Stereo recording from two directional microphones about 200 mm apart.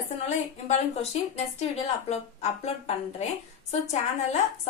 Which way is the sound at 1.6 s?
35° left (ahead or behind).